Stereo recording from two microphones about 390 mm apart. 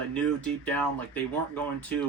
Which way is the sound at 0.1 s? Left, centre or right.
Centre.